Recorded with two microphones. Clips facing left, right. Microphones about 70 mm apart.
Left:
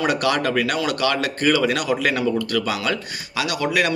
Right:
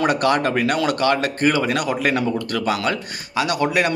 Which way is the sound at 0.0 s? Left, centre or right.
Right.